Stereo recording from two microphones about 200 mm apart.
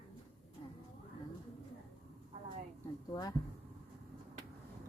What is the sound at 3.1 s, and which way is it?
Speech, 20° left (ahead or behind).